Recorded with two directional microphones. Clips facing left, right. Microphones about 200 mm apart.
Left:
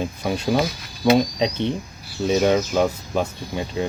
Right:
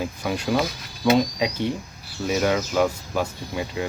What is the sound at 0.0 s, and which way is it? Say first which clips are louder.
Speech: left 2 dB; 25° left (ahead or behind).